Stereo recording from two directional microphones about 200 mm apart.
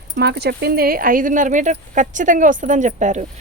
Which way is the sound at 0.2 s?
55° right (ahead or behind).